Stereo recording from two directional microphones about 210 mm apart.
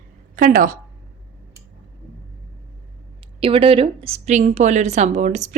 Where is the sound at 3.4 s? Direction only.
25° right (ahead or behind).